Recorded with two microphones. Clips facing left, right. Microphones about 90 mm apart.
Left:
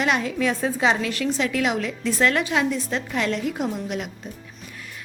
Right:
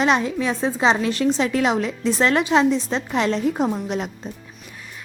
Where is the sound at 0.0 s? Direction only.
25° right (ahead or behind).